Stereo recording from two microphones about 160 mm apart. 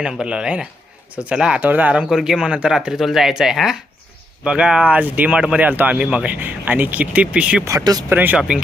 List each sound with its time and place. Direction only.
0.0 s speech: 5° right (ahead or behind)
7.6 s speech: 20° right (ahead or behind)
8.1 s speech: 10° right (ahead or behind)